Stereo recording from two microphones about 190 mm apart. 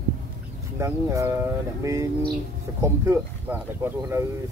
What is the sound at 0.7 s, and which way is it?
Speech, 15° right (ahead or behind).